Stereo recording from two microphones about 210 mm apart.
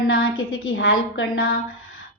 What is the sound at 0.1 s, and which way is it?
A woman's voice, 75° left (ahead or behind).